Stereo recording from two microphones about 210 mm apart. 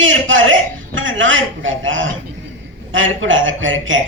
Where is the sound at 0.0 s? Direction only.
65° right (ahead or behind).